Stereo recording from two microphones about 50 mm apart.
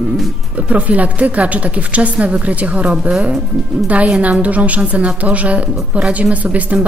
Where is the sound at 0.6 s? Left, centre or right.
Right.